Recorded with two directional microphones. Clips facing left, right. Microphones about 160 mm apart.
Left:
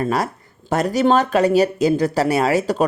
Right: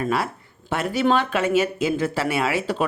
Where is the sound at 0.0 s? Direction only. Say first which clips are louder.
Left 3 dB; 40° left (ahead or behind).